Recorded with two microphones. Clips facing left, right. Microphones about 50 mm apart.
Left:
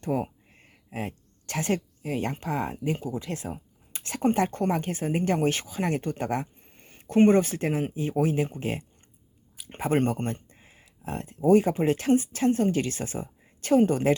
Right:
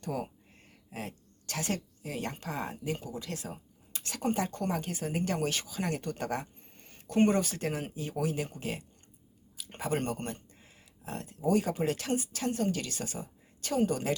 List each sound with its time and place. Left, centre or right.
0.0 s speech: left